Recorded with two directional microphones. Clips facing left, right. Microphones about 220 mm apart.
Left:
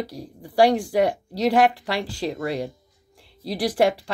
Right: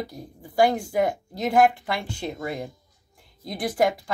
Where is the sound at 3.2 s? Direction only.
90° left.